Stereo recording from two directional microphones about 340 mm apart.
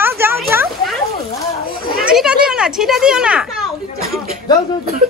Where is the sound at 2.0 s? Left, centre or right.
Centre.